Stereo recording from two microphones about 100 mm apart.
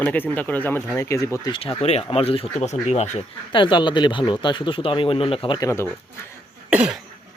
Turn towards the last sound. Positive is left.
turn(degrees=-10)  # may be behind; listen again after turning